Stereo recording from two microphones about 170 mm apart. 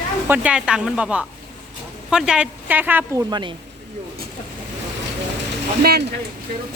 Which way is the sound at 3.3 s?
25° right (ahead or behind).